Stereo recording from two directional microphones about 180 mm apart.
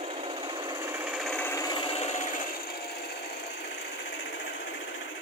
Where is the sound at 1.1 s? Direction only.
5° left (ahead or behind).